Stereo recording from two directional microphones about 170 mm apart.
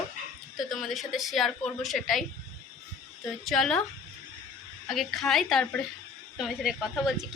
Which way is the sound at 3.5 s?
5° left (ahead or behind).